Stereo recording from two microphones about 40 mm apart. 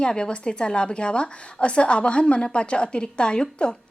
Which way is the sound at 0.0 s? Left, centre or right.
Left.